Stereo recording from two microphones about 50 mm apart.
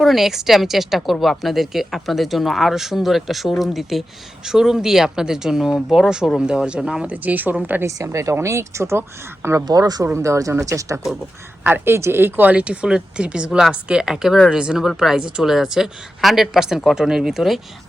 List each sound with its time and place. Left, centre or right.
0.0 s speech: centre
7.1 s speech: right
7.9 s speech: right
10.2 s speech: right
11.9 s speech: right
12.5 s speech: right; by 17.6 s centre